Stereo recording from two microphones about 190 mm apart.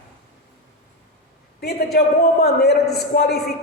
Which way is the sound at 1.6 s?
55° left (ahead or behind).